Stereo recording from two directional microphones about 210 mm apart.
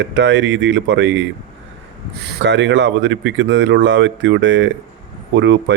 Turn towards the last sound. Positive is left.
turn(degrees=-55)  # may be behind; listen again after turning